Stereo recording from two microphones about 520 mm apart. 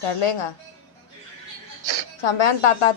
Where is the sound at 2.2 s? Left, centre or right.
Left.